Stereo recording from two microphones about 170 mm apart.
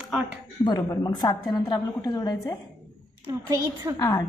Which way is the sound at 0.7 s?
20° left (ahead or behind).